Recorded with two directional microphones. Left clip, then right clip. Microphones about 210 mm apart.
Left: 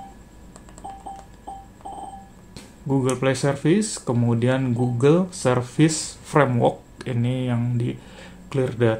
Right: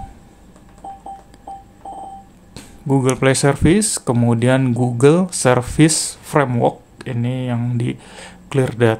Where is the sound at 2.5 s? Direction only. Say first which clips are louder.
Right 6 dB; 25° right (ahead or behind).